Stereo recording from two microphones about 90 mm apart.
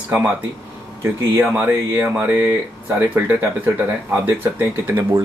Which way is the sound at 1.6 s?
25° right (ahead or behind).